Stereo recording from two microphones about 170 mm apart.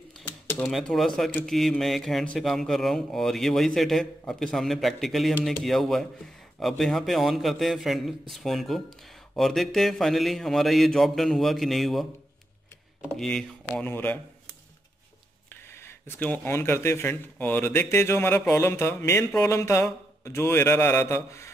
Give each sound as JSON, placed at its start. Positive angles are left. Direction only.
{"t": 0.1, "sound": "typewriter", "side_deg": 10}
{"t": 0.7, "sound": "a man's voice", "side_deg": 0}
{"t": 15.7, "sound": "speech", "side_deg": 15}